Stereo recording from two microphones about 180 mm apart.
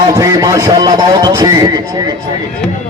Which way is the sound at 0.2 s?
20° right (ahead or behind).